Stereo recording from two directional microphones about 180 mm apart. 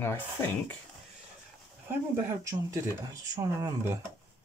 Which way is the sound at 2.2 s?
15° right (ahead or behind).